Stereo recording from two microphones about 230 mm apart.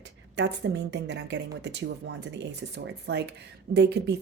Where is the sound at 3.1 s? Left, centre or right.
Right.